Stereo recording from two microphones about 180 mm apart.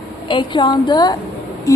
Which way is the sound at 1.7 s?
20° left (ahead or behind).